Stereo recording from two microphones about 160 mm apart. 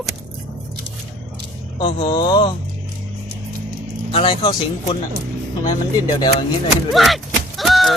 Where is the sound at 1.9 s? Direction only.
40° left (ahead or behind).